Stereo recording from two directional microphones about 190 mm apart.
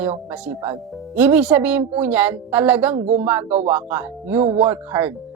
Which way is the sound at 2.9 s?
35° right (ahead or behind).